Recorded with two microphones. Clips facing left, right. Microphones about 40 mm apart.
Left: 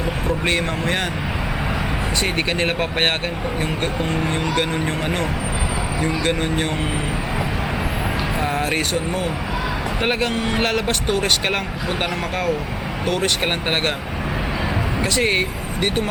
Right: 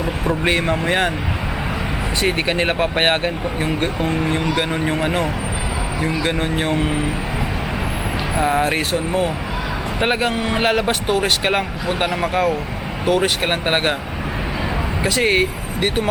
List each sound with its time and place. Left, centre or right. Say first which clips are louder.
0.3 s speech: right 4 dB; centre
2.2 s speech: right 4 dB; centre
6.0 s speech: right 1 dB; centre
8.4 s speech: right 6 dB; centre
15.0 s speech: right 3 dB; centre